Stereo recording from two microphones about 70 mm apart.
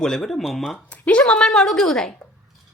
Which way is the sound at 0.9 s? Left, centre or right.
Left.